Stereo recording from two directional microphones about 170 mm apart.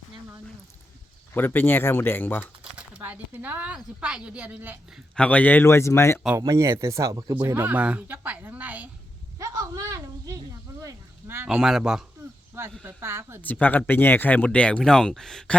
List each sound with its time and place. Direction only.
1.3 s speech: 10° left (ahead or behind)
2.7 s speech: 10° right (ahead or behind)
5.1 s speech: 5° left (ahead or behind)
6.4 s a woman's voice: 15° right (ahead or behind)
9.4 s a sound: 20° right (ahead or behind)
11.4 s a man's voice: 5° right (ahead or behind)
12.8 s speech: 15° right (ahead or behind)
13.4 s speech: 10° left (ahead or behind)